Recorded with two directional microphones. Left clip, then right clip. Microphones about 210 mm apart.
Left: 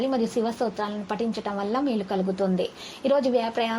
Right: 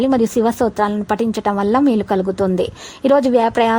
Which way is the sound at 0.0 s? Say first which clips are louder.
Right 10 dB; 45° right (ahead or behind).